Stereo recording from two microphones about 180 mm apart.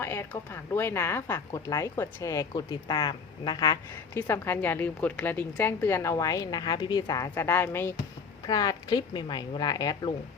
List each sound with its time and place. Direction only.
0.0 s a woman's voice: 15° left (ahead or behind)